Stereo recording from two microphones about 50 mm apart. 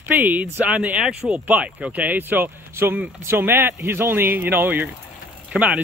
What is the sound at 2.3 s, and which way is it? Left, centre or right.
Speech, right.